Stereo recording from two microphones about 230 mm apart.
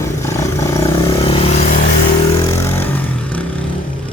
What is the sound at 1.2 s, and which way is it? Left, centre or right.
Vehicle, left.